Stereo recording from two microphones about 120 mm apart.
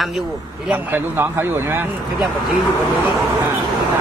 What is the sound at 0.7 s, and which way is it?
Speech, 15° right (ahead or behind).